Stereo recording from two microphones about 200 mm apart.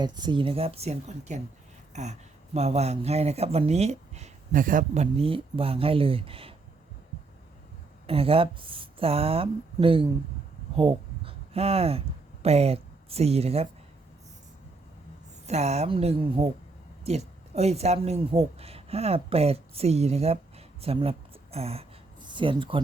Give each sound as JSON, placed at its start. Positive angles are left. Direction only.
{"t": 0.0, "sound": "speech", "side_deg": -20}
{"t": 8.0, "sound": "speech", "side_deg": -30}
{"t": 15.4, "sound": "speech", "side_deg": -35}